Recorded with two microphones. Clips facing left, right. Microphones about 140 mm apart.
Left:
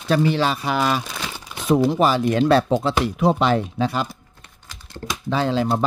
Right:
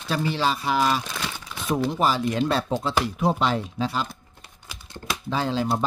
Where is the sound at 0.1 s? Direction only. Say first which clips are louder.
Left 5 dB; 65° left (ahead or behind).